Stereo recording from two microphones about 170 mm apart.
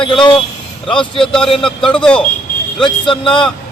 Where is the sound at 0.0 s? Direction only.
30° left (ahead or behind).